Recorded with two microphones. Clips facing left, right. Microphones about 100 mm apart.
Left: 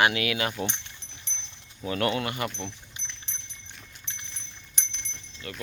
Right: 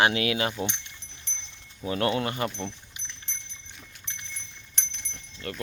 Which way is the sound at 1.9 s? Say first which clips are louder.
Right 1 dB; 30° right (ahead or behind).